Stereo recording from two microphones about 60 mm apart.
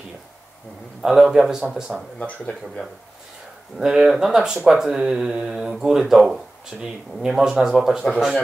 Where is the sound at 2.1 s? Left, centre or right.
Centre.